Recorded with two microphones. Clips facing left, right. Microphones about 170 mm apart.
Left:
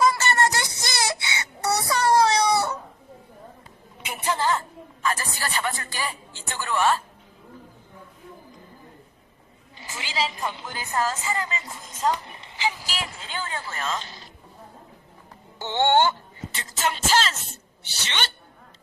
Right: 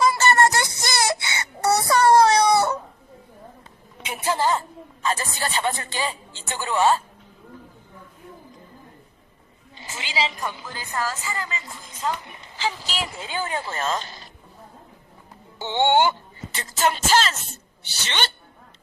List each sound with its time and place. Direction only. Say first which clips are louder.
0.3 s a sound: right 4 dB; 50° right (ahead or behind)
4.4 s a sound: right 2 dB; 15° right (ahead or behind)
5.0 s a woman's voice: right 2 dB; 25° right (ahead or behind)
9.7 s a sound: right 1 dB; 25° right (ahead or behind)
10.4 s speech: even; 25° left (ahead or behind)
12.5 s speech: right 1 dB; 10° left (ahead or behind)
13.2 s speech: right 5 dB; 15° right (ahead or behind)
13.7 s music: right 2 dB; 40° right (ahead or behind)
15.6 s speech: right 1 dB; 15° right (ahead or behind)
16.5 s music: right 5 dB; 40° right (ahead or behind)
18.0 s speech: right 3 dB; 35° right (ahead or behind)